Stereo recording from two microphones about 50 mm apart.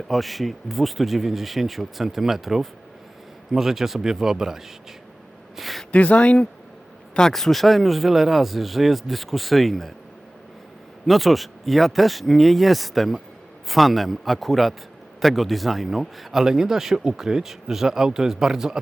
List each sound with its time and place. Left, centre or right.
0.1 s speech: centre
5.5 s a sound: centre
5.9 s speech: left
7.2 s speech: centre
11.0 s speech: centre